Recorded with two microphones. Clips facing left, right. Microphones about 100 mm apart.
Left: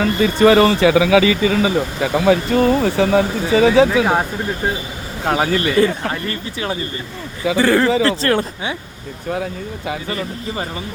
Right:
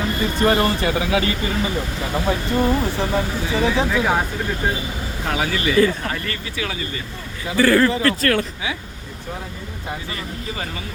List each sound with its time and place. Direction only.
0.0 s speech: 90° left
5.2 s speech: 40° left (ahead or behind)
5.8 s speech: 25° left (ahead or behind)
7.5 s speech: 20° left (ahead or behind)
9.3 s speech: 80° left